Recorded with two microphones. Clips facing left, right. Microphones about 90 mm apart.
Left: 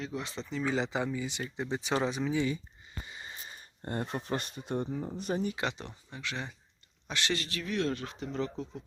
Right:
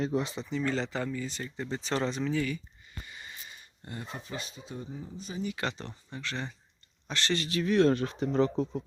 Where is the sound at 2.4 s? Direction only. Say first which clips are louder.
Left 1 dB; 25° left (ahead or behind); by 5.4 s 60° left (ahead or behind).